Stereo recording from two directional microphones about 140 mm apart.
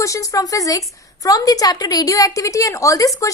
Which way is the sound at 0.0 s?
25° left (ahead or behind).